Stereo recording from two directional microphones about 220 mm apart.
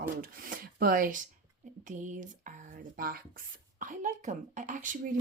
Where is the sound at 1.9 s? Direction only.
35° right (ahead or behind).